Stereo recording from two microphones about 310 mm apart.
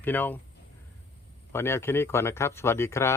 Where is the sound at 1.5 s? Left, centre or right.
Centre.